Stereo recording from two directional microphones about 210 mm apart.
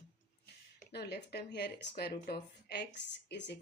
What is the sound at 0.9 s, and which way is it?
Speech, 50° left (ahead or behind).